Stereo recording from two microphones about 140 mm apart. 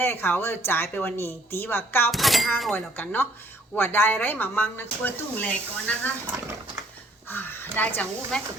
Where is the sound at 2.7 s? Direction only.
15° left (ahead or behind).